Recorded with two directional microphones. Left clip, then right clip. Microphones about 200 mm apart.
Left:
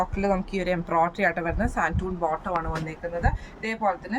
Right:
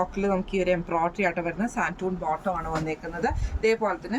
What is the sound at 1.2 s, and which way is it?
Speech, 25° left (ahead or behind).